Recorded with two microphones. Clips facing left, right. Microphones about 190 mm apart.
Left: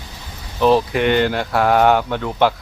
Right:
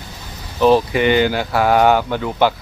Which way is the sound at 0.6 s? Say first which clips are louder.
Right 2 dB; centre (ahead or behind).